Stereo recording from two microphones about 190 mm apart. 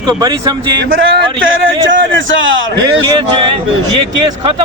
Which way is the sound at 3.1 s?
25° right (ahead or behind).